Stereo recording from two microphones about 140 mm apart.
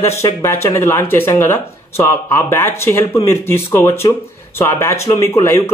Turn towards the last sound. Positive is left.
turn(degrees=20)  # may be behind; listen again after turning